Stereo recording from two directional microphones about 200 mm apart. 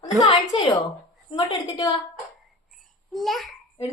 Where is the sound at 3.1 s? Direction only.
Centre (ahead or behind).